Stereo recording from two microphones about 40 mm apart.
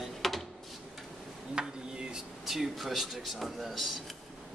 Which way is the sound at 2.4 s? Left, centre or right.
Centre.